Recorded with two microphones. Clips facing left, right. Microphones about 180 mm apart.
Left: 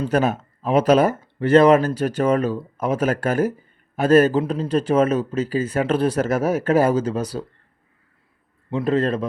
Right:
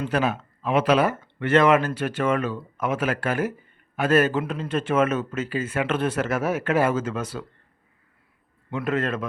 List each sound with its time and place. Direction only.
0.0 s a man's voice: 45° left (ahead or behind)
8.7 s a man's voice: 35° left (ahead or behind)